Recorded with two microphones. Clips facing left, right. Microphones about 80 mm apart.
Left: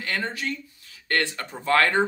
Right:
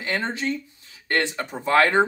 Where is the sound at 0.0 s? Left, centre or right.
Right.